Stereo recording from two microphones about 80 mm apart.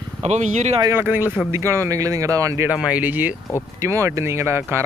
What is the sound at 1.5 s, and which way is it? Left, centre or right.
Speech, right.